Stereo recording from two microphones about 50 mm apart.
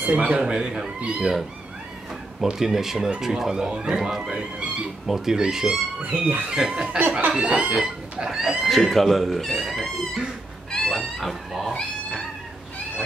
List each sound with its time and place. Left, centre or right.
0.0 s speech: right
2.6 s speech: centre
5.0 s speech: centre
7.0 s speech: right
7.2 s speech: right
8.6 s speech: centre
10.7 s a sound: centre
11.0 s speech: centre